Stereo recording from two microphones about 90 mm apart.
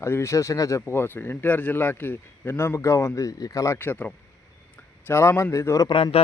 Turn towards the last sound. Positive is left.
turn(degrees=90)